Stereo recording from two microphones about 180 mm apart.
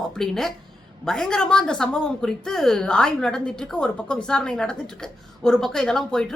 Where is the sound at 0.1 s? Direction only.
Centre (ahead or behind).